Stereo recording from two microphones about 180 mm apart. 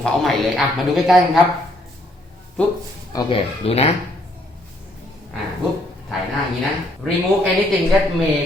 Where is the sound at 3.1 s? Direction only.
25° left (ahead or behind).